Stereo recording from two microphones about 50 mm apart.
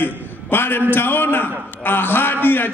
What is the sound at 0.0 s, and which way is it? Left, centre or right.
A man's voice, left.